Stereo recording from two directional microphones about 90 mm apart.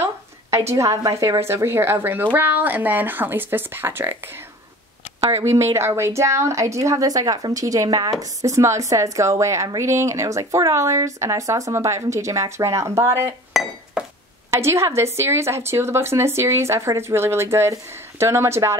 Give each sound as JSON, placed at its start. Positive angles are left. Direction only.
{"t": 0.0, "sound": "a woman's voice", "side_deg": -30}
{"t": 5.2, "sound": "a woman's voice", "side_deg": -30}
{"t": 13.5, "sound": "chink", "side_deg": -5}
{"t": 14.5, "sound": "a woman's voice", "side_deg": -30}